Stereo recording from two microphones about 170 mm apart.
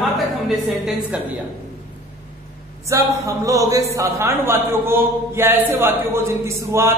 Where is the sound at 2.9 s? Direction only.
20° right (ahead or behind).